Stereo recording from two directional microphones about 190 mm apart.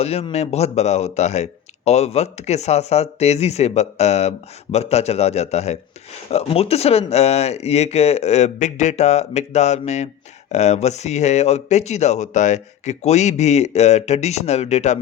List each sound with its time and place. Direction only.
0.0 s speech: 30° left (ahead or behind)